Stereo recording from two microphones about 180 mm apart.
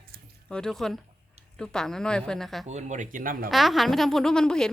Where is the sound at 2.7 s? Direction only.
40° right (ahead or behind).